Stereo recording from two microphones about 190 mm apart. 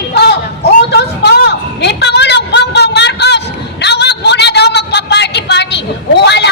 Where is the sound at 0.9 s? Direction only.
60° left (ahead or behind).